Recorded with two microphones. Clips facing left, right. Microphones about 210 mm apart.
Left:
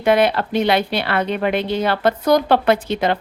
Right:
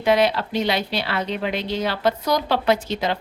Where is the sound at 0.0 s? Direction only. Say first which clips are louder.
Left 3 dB; 55° left (ahead or behind).